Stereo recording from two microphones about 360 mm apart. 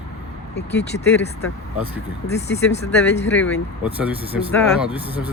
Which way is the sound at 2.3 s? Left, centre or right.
Left.